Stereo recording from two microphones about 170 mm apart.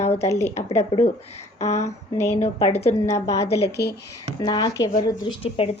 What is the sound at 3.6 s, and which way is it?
Speech, 75° left (ahead or behind).